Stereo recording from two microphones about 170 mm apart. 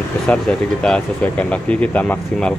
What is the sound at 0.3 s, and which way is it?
Speech, 5° left (ahead or behind).